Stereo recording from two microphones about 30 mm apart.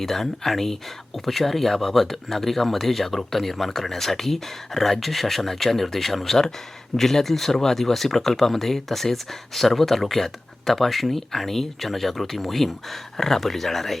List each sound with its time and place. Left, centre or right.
0.0 s speech: centre